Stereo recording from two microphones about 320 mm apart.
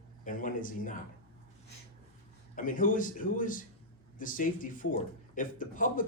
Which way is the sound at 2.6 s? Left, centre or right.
Left.